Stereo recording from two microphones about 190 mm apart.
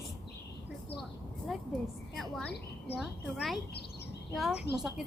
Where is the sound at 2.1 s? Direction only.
Centre (ahead or behind).